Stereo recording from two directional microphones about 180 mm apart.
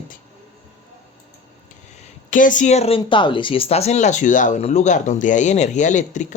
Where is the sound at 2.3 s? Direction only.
45° left (ahead or behind).